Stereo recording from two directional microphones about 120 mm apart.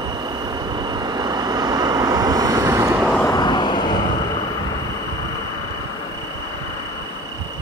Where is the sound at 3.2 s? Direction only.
35° left (ahead or behind).